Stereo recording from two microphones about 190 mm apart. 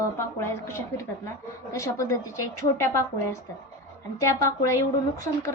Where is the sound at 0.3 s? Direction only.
15° left (ahead or behind).